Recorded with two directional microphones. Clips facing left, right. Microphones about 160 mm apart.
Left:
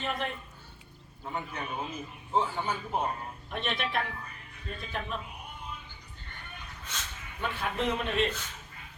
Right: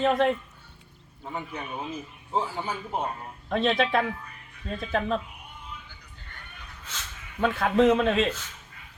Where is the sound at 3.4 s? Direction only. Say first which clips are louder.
Right 10 dB; 90° right.